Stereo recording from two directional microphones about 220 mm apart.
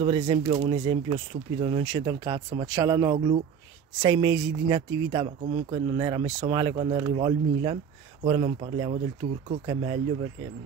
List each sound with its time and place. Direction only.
0.0 s speech: 25° right (ahead or behind)